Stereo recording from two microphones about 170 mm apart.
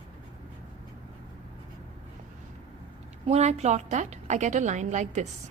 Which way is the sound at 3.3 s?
40° right (ahead or behind).